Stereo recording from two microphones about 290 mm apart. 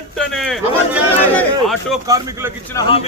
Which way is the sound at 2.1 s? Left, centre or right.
Centre.